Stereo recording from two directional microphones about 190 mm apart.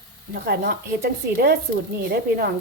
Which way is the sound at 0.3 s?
55° right (ahead or behind).